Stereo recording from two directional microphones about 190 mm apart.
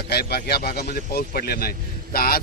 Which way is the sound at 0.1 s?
55° left (ahead or behind).